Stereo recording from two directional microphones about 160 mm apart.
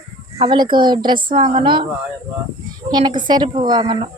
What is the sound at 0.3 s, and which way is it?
A woman's voice, 30° right (ahead or behind).